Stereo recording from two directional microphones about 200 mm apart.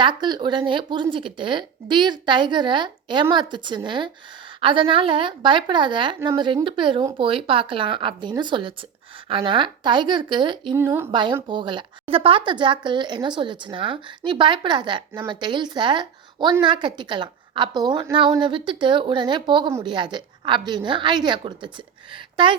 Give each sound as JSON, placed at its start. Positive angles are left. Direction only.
{"t": 0.0, "sound": "a woman's voice", "side_deg": -20}
{"t": 10.8, "sound": "a woman's voice", "side_deg": -10}
{"t": 11.1, "sound": "a woman's voice", "side_deg": -25}